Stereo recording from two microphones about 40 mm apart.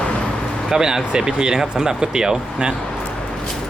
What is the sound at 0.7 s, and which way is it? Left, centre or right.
Speech, centre.